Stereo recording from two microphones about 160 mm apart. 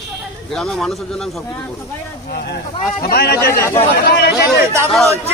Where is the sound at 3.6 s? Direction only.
15° left (ahead or behind).